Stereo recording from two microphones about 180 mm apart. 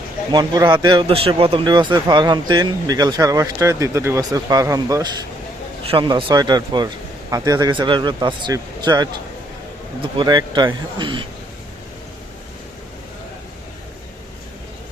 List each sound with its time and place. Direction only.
0.3 s speech: 25° right (ahead or behind)
5.8 s speech: 30° right (ahead or behind)